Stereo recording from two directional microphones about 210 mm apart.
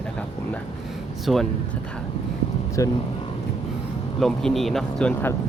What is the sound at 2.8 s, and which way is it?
Speech, 15° left (ahead or behind).